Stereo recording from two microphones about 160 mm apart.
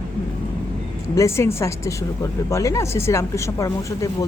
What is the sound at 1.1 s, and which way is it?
A woman's voice, 20° left (ahead or behind).